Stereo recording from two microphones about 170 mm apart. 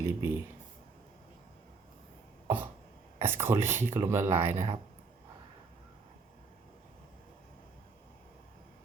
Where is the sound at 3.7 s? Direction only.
45° right (ahead or behind).